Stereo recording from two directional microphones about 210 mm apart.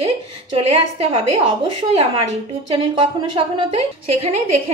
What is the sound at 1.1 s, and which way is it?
Speech, 25° right (ahead or behind).